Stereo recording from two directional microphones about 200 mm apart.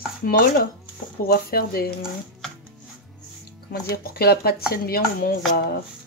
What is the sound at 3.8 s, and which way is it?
Speech, 50° left (ahead or behind).